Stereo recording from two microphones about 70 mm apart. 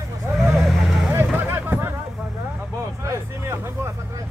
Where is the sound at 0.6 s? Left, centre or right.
Centre.